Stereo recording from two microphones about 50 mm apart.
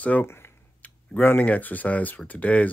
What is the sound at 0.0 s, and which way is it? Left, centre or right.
Speech, left.